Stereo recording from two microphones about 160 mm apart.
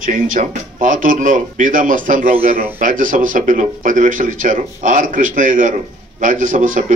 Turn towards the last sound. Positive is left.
turn(degrees=-55)  # may be behind; listen again after turning